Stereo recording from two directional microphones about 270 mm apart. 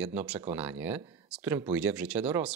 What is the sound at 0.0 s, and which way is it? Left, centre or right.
Speech, centre.